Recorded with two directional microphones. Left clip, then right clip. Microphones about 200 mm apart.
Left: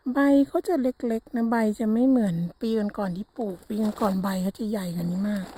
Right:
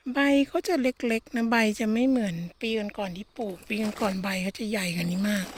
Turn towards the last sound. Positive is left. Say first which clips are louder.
# right 2 dB
turn(degrees=5)  # may be behind; listen again after turning